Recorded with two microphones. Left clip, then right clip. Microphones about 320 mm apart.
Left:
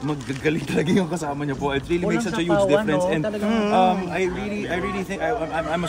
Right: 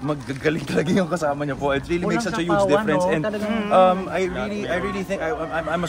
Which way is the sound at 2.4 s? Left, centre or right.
Right.